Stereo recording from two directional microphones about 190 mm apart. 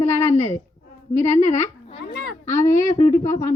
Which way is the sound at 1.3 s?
35° left (ahead or behind).